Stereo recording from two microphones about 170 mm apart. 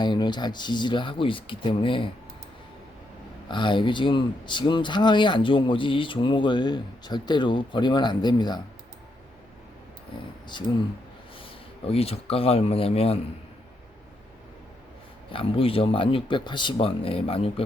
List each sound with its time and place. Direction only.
0.0 s speech: 25° left (ahead or behind)
3.5 s speech: 30° left (ahead or behind)
11.3 s speech: 35° left (ahead or behind)
15.3 s speech: 35° left (ahead or behind)